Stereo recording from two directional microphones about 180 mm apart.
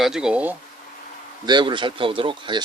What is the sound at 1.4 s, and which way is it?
Speech, 25° right (ahead or behind).